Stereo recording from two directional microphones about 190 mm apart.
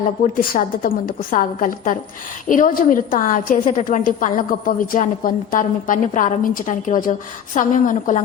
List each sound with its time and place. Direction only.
0.3 s a woman's voice: 50° left (ahead or behind)